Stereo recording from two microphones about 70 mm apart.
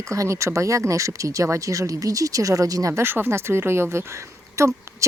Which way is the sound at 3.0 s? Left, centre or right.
Right.